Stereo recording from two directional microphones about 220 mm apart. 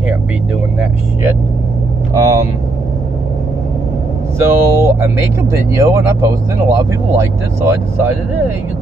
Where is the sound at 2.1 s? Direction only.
15° right (ahead or behind).